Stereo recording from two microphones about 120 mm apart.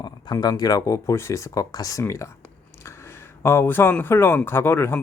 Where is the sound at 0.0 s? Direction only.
35° left (ahead or behind).